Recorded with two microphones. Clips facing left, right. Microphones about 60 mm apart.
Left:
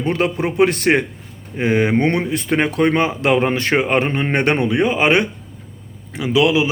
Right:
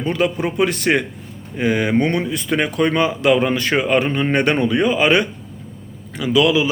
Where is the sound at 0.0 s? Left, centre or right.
Left.